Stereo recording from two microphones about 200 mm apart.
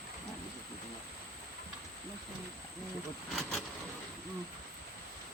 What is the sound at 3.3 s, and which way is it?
Vehicle, centre (ahead or behind).